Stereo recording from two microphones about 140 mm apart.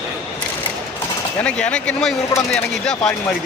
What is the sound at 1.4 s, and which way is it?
Speech, 5° left (ahead or behind).